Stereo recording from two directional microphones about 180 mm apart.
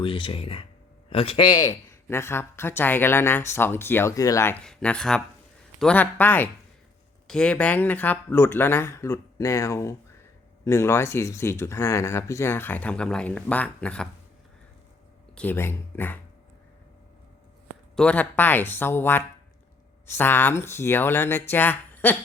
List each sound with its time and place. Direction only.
0.0 s speech: 30° left (ahead or behind); by 14.1 s 5° left (ahead or behind)
15.4 s speech: 10° left (ahead or behind)
17.9 s speech: 5° left (ahead or behind)